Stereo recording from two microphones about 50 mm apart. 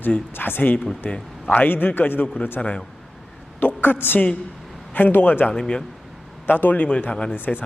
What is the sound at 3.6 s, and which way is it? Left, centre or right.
A woman's voice, left.